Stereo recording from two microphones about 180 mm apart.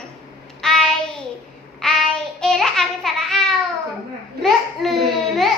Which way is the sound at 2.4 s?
Centre (ahead or behind).